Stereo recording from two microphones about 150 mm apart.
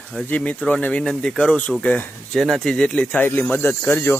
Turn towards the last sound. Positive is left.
turn(degrees=15)  # may be behind; listen again after turning